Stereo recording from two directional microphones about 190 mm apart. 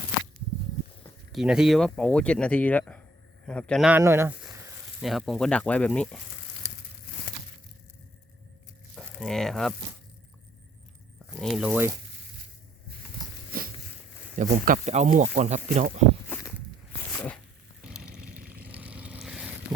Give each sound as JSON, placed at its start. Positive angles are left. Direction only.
{"t": 1.3, "sound": "speech", "side_deg": -5}
{"t": 4.9, "sound": "speech", "side_deg": 0}
{"t": 9.0, "sound": "speech", "side_deg": 0}
{"t": 11.3, "sound": "speech", "side_deg": 0}
{"t": 14.5, "sound": "speech", "side_deg": -40}
{"t": 16.3, "sound": "walk", "side_deg": 10}
{"t": 17.2, "sound": "a sound", "side_deg": 5}
{"t": 18.6, "sound": "vehicle", "side_deg": -10}